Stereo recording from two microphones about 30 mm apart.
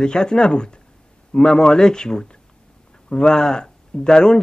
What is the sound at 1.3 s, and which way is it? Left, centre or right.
Speech, centre.